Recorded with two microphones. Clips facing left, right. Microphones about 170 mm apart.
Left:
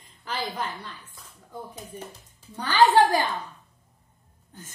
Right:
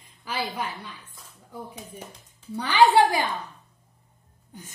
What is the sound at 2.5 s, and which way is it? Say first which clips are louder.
Speech: right 1 dB; 10° right (ahead or behind).